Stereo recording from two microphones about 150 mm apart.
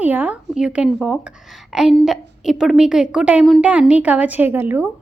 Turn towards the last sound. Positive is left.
turn(degrees=-15)  # may be behind; listen again after turning